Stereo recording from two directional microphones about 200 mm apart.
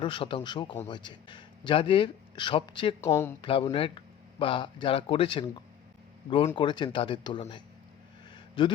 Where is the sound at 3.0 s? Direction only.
10° left (ahead or behind).